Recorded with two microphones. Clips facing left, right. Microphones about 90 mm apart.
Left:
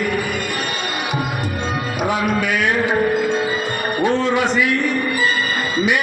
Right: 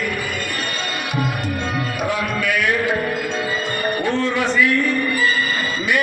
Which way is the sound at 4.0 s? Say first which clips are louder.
Left 5 dB; 20° left (ahead or behind).